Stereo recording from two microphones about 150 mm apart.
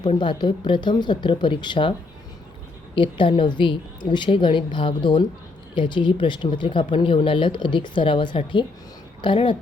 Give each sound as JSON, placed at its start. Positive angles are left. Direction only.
{"t": 0.1, "sound": "speech", "side_deg": 30}
{"t": 2.9, "sound": "speech", "side_deg": 35}